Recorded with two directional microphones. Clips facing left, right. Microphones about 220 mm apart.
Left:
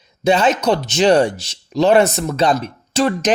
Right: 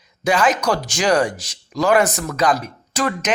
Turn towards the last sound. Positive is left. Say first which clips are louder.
# left 5 dB
turn(degrees=30)  # may be behind; listen again after turning